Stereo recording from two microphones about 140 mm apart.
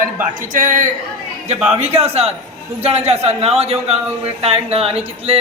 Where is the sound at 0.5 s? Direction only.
70° right (ahead or behind).